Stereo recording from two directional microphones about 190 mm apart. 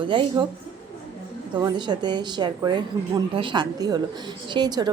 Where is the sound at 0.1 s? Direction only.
25° right (ahead or behind).